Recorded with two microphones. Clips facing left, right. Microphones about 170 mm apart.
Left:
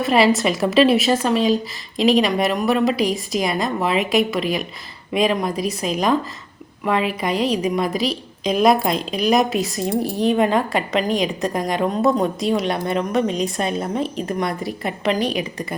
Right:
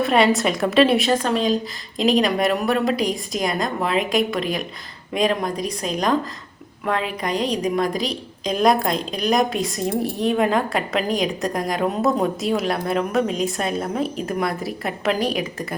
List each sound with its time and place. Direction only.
0.0 s a woman's voice: centre (ahead or behind)